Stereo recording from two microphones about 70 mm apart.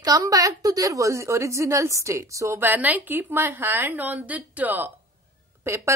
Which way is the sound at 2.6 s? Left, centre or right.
Right.